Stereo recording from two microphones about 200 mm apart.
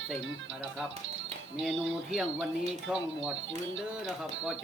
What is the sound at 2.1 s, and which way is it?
Speech, 5° right (ahead or behind).